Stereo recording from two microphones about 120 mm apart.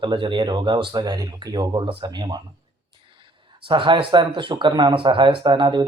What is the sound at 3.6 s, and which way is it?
Speech, 40° right (ahead or behind).